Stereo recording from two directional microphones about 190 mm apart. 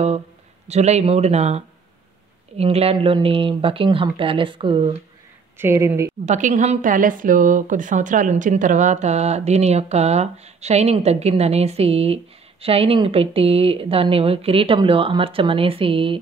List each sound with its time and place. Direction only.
0.7 s a woman's voice: 35° right (ahead or behind)
5.6 s speech: 15° right (ahead or behind)
6.2 s a woman's voice: 40° right (ahead or behind)